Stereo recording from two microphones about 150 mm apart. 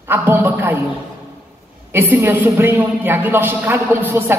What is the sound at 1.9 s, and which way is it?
A woman's voice, 15° right (ahead or behind).